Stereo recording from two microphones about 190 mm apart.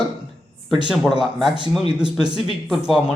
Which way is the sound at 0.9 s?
5° right (ahead or behind).